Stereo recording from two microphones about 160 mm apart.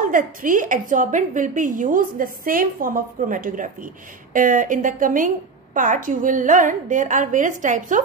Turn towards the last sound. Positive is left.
turn(degrees=-55)  # may be behind; listen again after turning